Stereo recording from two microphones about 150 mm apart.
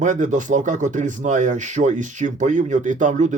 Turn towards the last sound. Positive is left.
turn(degrees=-55)  # may be behind; listen again after turning